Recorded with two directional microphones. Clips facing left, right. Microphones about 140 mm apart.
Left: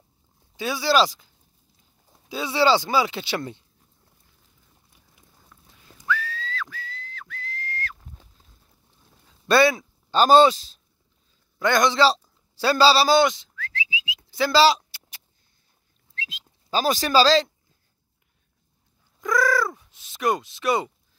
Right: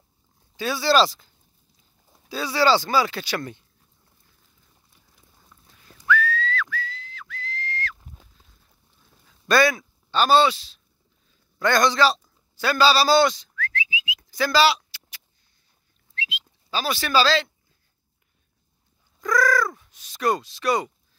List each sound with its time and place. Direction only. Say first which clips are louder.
0.6 s speech: right 1 dB; 15° left (ahead or behind)
5.1 s clip-clop: left 1 dB; centre (ahead or behind)
5.7 s whistling: even; 20° left (ahead or behind)
6.0 s whistling: right 6 dB; 30° left (ahead or behind); by 7.3 s 50° left (ahead or behind)
8.0 s a sound: even; 5° right (ahead or behind)
9.0 s quack: left 1 dB; 15° left (ahead or behind)
9.5 s speech: left 1 dB; 25° left (ahead or behind)
10.1 s speech: left 3 dB; 40° left (ahead or behind)
11.6 s a man's voice: even; 20° left (ahead or behind)
16.3 s speech: left 2 dB; 40° left (ahead or behind)
19.2 s crow: right 1 dB; 25° left (ahead or behind)
19.9 s speech: right 1 dB; 25° left (ahead or behind)